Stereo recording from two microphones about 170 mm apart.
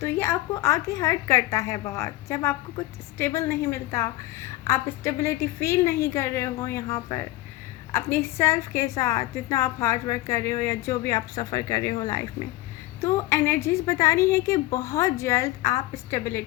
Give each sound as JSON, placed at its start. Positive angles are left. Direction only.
{"t": 0.0, "sound": "a woman's voice", "side_deg": 15}